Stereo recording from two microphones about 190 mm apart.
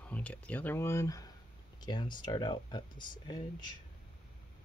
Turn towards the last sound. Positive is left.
turn(degrees=25)  # may be behind; listen again after turning